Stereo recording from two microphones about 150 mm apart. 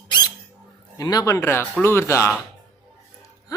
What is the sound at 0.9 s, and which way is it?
Speech, 25° left (ahead or behind).